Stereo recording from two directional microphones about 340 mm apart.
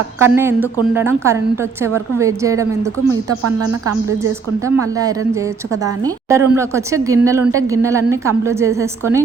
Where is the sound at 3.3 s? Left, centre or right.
Right.